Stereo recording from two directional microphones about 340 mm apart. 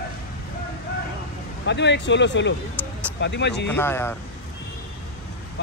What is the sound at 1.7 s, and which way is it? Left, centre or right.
Speech, left.